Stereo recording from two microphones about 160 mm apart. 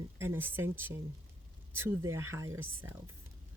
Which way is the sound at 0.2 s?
15° right (ahead or behind).